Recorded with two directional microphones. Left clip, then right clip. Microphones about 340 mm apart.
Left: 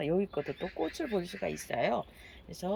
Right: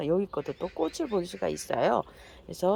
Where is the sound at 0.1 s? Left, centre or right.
Centre.